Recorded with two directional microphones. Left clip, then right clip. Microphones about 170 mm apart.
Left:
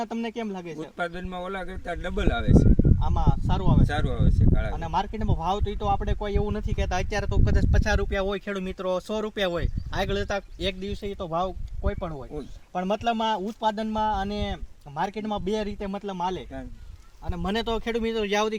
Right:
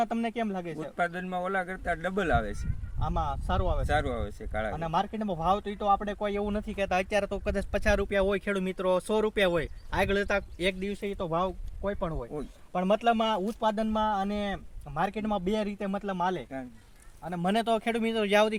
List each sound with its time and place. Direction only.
0.0 s speech: 20° right (ahead or behind)
0.8 s a man's voice: 5° right (ahead or behind)
3.0 s speech: 15° right (ahead or behind)
3.8 s a man's voice: 5° right (ahead or behind)
4.7 s speech: 20° right (ahead or behind)